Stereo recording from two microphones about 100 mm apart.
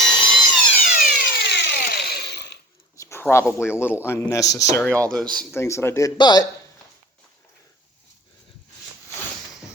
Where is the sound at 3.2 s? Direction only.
25° left (ahead or behind).